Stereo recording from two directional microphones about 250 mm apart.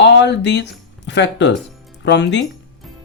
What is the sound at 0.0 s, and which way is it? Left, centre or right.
Speech, left.